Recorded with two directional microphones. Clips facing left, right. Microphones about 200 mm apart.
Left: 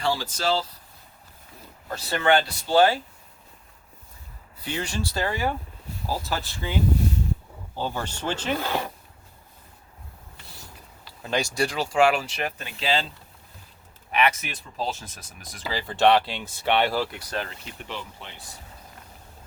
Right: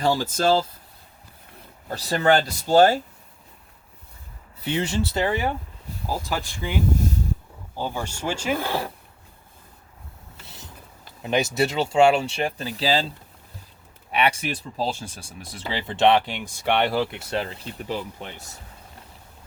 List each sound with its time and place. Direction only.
0.0 s speech: 45° right (ahead or behind)
1.9 s speech: 35° right (ahead or behind)
4.6 s speech: 25° right (ahead or behind)
7.8 s speech: 10° right (ahead or behind)
10.4 s a sound: 20° right (ahead or behind)
11.2 s speech: 20° right (ahead or behind)
14.1 s speech: 30° right (ahead or behind)